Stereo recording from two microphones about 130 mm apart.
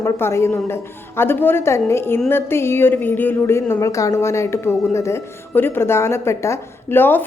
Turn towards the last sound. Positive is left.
turn(degrees=15)  # may be behind; listen again after turning